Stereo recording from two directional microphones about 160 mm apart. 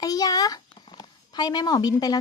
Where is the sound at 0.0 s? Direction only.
25° left (ahead or behind).